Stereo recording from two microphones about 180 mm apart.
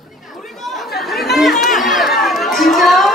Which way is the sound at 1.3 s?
Centre (ahead or behind).